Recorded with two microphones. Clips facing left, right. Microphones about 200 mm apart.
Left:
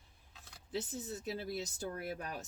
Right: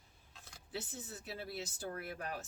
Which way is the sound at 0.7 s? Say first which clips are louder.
Left 5 dB; 40° left (ahead or behind).